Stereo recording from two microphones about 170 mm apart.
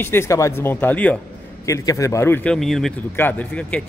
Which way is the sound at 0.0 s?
15° left (ahead or behind).